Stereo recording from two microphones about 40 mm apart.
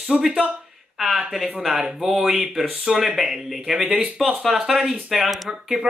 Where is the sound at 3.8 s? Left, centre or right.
Right.